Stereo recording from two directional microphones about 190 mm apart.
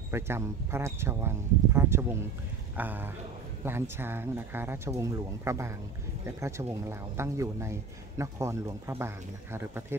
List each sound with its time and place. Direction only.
0.1 s speech: 10° right (ahead or behind)